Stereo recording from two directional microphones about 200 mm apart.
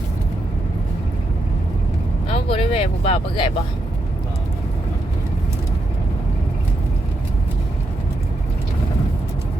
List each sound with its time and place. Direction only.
2.3 s speech: 30° left (ahead or behind)